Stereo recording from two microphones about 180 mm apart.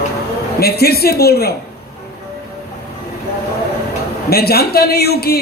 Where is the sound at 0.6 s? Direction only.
60° left (ahead or behind).